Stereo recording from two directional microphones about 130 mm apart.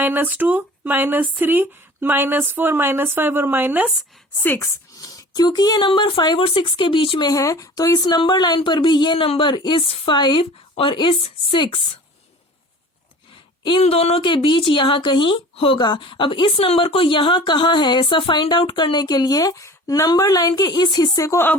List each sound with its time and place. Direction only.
0.0 s speech: 15° right (ahead or behind)
4.4 s speech: 20° left (ahead or behind); by 11.9 s 40° left (ahead or behind)
13.7 s speech: 45° left (ahead or behind); by 21.5 s 20° left (ahead or behind)